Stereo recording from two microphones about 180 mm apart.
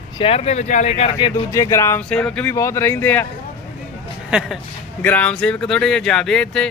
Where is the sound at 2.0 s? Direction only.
5° left (ahead or behind).